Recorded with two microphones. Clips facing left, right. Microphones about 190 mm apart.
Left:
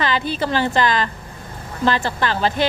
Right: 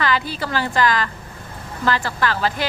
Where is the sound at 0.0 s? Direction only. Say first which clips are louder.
Left 1 dB; 20° left (ahead or behind).